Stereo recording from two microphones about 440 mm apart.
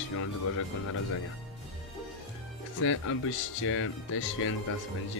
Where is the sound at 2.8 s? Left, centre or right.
Left.